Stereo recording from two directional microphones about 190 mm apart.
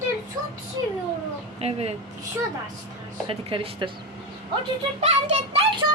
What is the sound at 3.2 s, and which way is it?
Speech, 30° right (ahead or behind).